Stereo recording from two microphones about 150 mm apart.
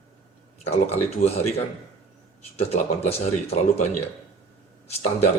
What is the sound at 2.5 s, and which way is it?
Speech, 45° left (ahead or behind).